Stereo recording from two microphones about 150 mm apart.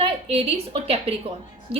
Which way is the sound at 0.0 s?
40° right (ahead or behind).